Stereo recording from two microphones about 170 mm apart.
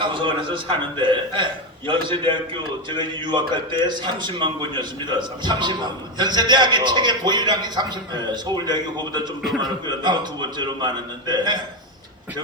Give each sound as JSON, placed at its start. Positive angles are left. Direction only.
{"t": 0.0, "sound": "a man's voice", "side_deg": -30}